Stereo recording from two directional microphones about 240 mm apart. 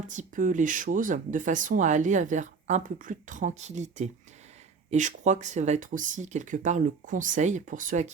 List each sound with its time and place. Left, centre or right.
0.1 s speech: right